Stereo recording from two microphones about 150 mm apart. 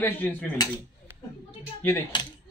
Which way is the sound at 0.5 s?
25° left (ahead or behind).